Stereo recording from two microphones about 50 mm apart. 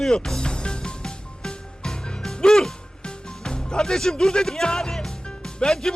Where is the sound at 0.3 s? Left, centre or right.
Centre.